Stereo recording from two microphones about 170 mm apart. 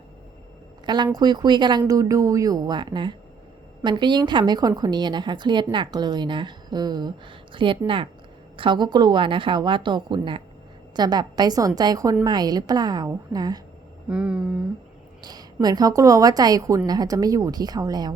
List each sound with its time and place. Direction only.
0.9 s a woman's voice: 25° right (ahead or behind)
14.1 s humming: 5° right (ahead or behind)
15.2 s a sound: 25° right (ahead or behind)
15.6 s a woman's voice: 20° right (ahead or behind)